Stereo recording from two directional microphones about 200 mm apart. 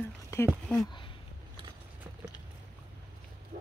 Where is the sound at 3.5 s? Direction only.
40° right (ahead or behind).